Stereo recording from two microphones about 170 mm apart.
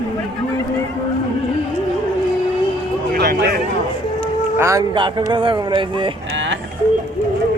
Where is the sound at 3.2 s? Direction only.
70° right (ahead or behind).